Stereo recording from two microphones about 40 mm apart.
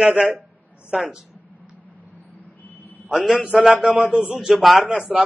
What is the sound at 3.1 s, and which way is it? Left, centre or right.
Speech, centre.